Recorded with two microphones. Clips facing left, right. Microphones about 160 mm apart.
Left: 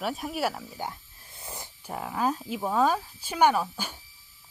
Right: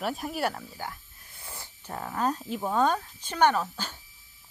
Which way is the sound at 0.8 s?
20° left (ahead or behind).